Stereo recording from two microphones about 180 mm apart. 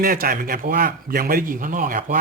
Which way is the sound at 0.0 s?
55° right (ahead or behind).